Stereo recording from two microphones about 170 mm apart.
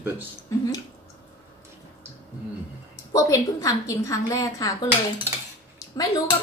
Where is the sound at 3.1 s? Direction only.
20° left (ahead or behind).